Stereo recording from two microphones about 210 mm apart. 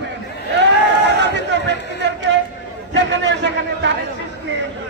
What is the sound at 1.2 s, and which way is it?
Crowd, 55° right (ahead or behind).